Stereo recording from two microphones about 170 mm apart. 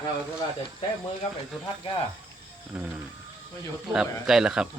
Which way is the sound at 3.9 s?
5° right (ahead or behind).